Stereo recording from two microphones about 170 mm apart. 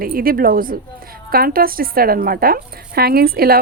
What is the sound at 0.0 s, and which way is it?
A woman's voice, 60° right (ahead or behind).